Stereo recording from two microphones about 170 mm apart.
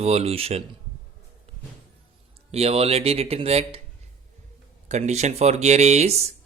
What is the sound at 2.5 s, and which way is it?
Speech, 35° right (ahead or behind).